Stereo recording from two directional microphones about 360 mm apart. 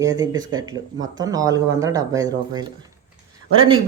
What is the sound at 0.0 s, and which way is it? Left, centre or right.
Speech, centre.